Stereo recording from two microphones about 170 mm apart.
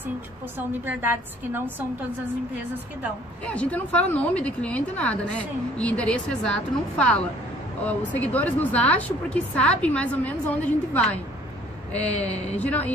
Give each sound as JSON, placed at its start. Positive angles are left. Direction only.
{"t": 0.8, "sound": "a woman's voice", "side_deg": -10}
{"t": 3.4, "sound": "a woman's voice", "side_deg": 5}
{"t": 11.9, "sound": "a woman's voice", "side_deg": 40}
{"t": 12.5, "sound": "a woman's voice", "side_deg": 10}